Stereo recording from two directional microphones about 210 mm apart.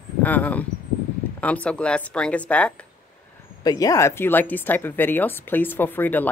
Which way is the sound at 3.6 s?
15° left (ahead or behind).